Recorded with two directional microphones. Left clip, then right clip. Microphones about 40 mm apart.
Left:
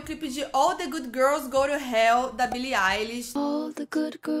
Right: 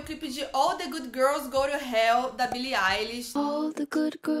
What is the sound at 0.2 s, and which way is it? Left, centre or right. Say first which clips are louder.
A woman's voice: left 3 dB; left.